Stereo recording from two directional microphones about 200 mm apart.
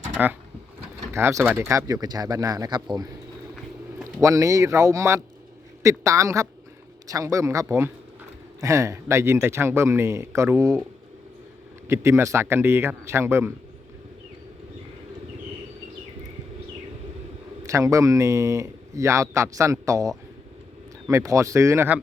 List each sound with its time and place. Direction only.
0.2 s a man's voice: 5° right (ahead or behind)
4.2 s a man's voice: 15° right (ahead or behind)
11.9 s a man's voice: 15° right (ahead or behind)
17.6 s a man's voice: 15° right (ahead or behind)